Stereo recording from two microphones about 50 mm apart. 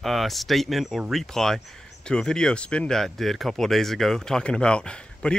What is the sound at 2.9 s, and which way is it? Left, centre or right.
Speech, centre.